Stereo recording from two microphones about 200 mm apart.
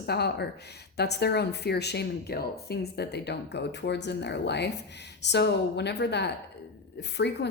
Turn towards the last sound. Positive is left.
turn(degrees=60)  # may be behind; listen again after turning